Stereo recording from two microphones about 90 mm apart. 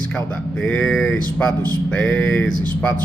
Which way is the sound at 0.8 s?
10° left (ahead or behind).